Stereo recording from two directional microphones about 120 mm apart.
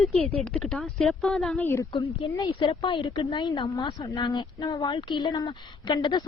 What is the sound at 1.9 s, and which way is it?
A woman's voice, 40° left (ahead or behind).